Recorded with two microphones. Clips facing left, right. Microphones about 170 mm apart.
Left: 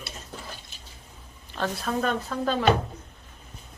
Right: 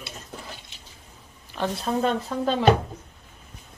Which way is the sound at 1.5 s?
20° right (ahead or behind).